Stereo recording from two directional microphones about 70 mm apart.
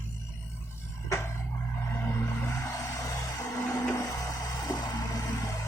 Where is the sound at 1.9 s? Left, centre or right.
Left.